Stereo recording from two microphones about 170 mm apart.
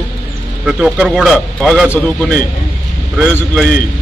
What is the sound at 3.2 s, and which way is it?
Speech, 5° left (ahead or behind).